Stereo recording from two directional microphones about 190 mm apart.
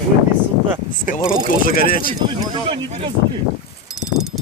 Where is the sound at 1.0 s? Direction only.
45° left (ahead or behind).